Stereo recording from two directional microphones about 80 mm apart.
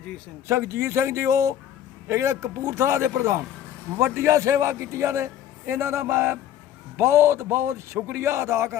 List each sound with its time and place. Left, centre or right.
0.4 s a man's voice: right